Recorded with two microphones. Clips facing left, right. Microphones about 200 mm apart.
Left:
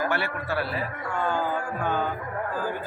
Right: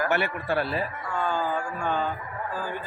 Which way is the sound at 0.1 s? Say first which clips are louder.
Right 2 dB; 20° right (ahead or behind).